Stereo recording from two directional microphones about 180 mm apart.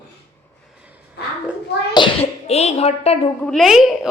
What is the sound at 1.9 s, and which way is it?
A child's voice, 30° left (ahead or behind).